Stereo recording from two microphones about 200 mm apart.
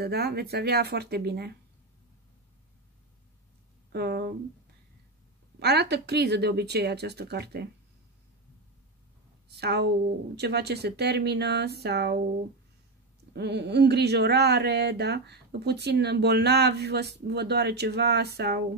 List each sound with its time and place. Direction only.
0.0 s speech: 55° right (ahead or behind)
3.9 s speech: 55° right (ahead or behind)
5.6 s speech: 55° right (ahead or behind)
9.6 s speech: 55° right (ahead or behind)
13.3 s speech: 55° right (ahead or behind)